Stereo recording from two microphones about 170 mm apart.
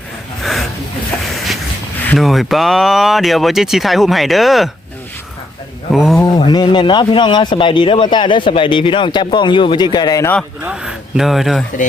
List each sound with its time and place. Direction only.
0.4 s a sound: centre (ahead or behind)
2.1 s speech: centre (ahead or behind)
5.9 s speech: centre (ahead or behind)
6.2 s speech: 25° left (ahead or behind)
10.6 s speech: 5° right (ahead or behind)